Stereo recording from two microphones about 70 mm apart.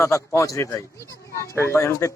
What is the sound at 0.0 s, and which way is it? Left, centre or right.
A man's voice, left.